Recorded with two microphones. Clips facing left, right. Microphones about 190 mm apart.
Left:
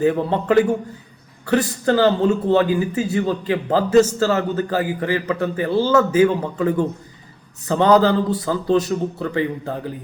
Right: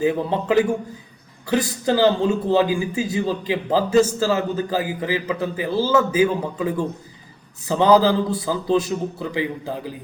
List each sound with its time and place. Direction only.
0.0 s a man's voice: 10° right (ahead or behind)